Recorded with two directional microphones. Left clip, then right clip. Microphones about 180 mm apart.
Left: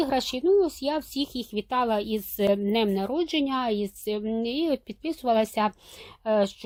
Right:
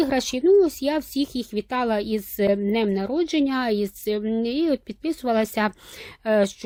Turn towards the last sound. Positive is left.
turn(degrees=-30)  # may be behind; listen again after turning